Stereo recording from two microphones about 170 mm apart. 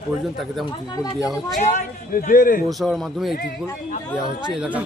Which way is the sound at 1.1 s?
Centre (ahead or behind).